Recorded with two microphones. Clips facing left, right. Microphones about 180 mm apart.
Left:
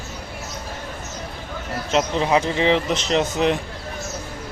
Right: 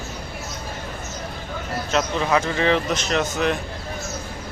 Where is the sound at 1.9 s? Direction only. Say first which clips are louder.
Left 2 dB; 25° left (ahead or behind).